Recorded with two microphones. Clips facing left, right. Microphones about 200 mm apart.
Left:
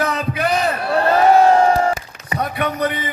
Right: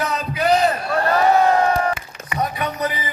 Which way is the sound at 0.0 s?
55° left (ahead or behind).